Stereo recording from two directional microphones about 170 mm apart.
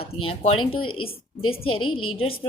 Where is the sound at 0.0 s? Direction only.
35° left (ahead or behind).